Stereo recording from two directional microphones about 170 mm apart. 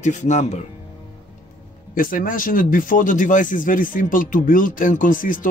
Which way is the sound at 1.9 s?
55° left (ahead or behind).